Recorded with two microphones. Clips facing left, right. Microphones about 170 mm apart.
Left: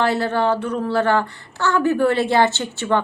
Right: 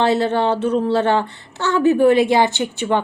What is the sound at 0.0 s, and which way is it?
A woman's voice, 20° right (ahead or behind).